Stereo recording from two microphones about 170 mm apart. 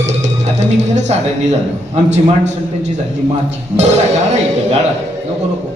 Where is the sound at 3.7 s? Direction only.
40° right (ahead or behind).